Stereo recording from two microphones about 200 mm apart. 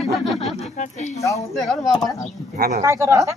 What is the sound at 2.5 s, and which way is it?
Speech, 50° right (ahead or behind).